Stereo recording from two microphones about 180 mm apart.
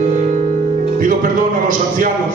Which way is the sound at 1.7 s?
50° right (ahead or behind).